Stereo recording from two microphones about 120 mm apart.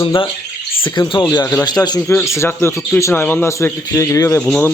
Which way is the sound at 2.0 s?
25° left (ahead or behind).